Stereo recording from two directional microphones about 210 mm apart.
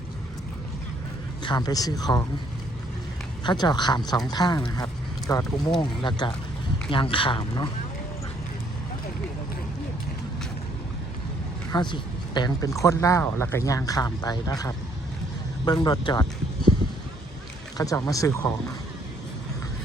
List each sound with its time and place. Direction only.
1.4 s speech: 20° left (ahead or behind)
3.4 s speech: 20° left (ahead or behind)
11.7 s speech: 20° left (ahead or behind)
17.7 s speech: 15° left (ahead or behind)